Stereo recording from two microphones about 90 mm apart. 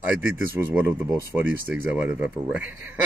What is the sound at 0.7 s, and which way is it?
Speech, 20° right (ahead or behind).